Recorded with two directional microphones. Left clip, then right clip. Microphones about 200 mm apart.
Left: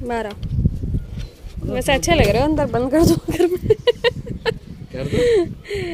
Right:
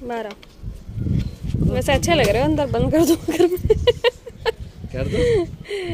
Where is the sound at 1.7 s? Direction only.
5° left (ahead or behind).